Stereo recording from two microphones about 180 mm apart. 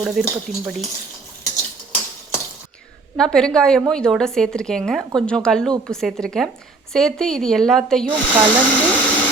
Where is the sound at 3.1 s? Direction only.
5° left (ahead or behind).